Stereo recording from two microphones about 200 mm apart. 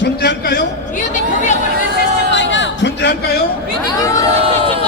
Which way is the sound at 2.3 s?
65° left (ahead or behind).